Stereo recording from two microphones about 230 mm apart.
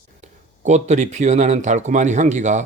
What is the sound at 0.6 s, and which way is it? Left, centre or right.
Speech, right.